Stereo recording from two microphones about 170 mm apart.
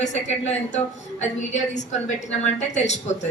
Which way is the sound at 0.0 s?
45° left (ahead or behind).